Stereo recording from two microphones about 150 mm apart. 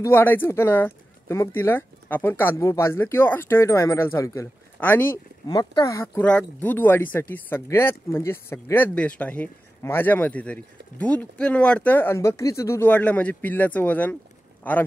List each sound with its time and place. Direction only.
0.0 s speech: 15° left (ahead or behind)
5.5 s speech: 25° left (ahead or behind)
6.2 s a man's voice: 10° left (ahead or behind)